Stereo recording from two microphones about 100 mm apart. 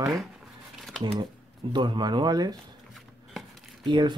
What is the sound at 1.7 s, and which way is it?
Speech, 50° right (ahead or behind).